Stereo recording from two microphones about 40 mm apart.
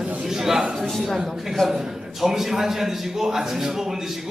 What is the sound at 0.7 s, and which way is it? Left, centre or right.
A man's voice, centre.